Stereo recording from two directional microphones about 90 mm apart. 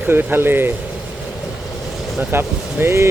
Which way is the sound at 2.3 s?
25° right (ahead or behind).